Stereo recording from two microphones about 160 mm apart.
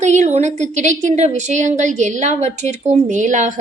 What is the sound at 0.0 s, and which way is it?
A woman's voice, 45° right (ahead or behind).